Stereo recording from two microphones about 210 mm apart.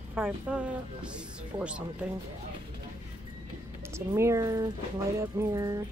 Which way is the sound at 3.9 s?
15° right (ahead or behind).